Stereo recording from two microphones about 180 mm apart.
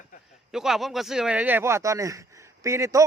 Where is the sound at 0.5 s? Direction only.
Centre (ahead or behind).